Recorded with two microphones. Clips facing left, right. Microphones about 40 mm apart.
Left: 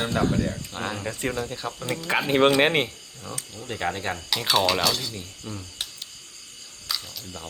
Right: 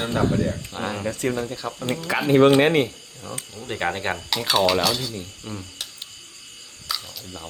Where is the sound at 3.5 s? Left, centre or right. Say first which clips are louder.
Right 3 dB; centre.